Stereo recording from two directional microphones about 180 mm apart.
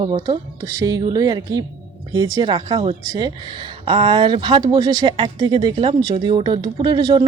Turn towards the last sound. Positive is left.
turn(degrees=-25)  # may be behind; listen again after turning